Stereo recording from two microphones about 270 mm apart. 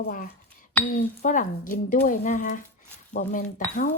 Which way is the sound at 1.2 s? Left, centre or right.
Left.